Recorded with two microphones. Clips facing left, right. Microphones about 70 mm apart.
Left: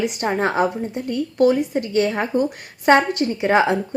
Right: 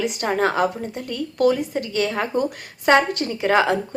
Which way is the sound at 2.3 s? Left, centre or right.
Right.